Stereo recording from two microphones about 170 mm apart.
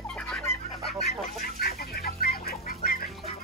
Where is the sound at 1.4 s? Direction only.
65° left (ahead or behind).